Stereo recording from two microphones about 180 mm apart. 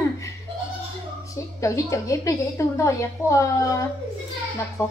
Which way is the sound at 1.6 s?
15° left (ahead or behind).